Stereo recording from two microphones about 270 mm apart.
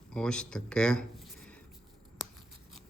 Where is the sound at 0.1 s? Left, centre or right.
Centre.